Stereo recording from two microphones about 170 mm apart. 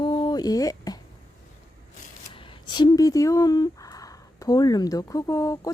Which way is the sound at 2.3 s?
30° left (ahead or behind).